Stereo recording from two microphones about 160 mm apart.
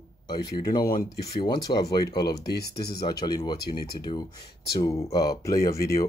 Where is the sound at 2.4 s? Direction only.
90° left.